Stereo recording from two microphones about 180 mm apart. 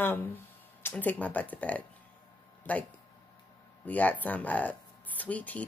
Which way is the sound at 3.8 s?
10° left (ahead or behind).